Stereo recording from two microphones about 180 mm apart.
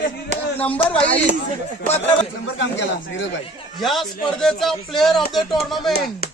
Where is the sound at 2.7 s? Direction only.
90° left.